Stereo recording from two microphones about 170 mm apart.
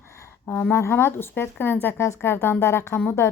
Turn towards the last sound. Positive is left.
turn(degrees=15)  # may be behind; listen again after turning